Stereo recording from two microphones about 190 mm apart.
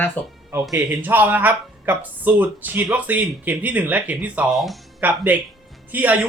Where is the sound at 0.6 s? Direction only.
Centre (ahead or behind).